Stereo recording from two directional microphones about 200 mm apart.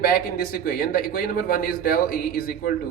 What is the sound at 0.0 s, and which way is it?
A man's voice, 50° left (ahead or behind).